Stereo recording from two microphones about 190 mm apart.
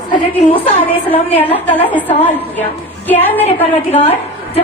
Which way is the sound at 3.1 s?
10° left (ahead or behind).